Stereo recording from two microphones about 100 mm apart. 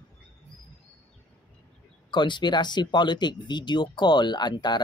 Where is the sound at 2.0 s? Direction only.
50° left (ahead or behind).